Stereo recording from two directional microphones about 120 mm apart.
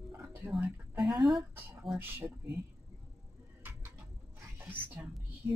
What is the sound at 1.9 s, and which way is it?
Speech, 20° right (ahead or behind).